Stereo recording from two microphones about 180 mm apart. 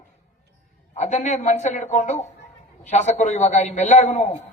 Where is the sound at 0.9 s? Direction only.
40° left (ahead or behind).